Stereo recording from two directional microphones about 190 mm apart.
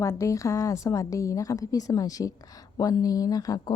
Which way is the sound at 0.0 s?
15° left (ahead or behind).